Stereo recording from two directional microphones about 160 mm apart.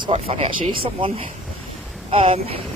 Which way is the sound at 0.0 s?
35° right (ahead or behind).